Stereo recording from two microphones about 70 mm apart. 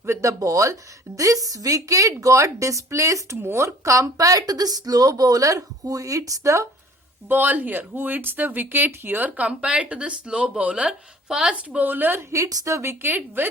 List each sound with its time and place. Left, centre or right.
0.0 s speech: right
7.3 s speech: right
12.3 s a woman's voice: right